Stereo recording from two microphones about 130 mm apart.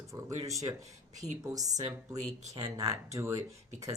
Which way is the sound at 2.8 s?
25° right (ahead or behind).